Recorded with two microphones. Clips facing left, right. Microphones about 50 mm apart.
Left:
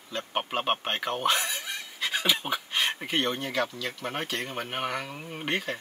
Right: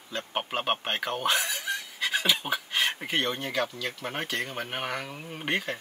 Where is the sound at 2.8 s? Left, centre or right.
Centre.